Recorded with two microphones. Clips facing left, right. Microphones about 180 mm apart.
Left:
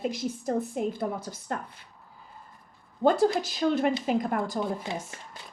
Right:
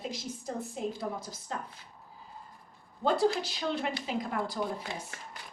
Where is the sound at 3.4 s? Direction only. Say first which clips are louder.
Left 8 dB; 45° left (ahead or behind).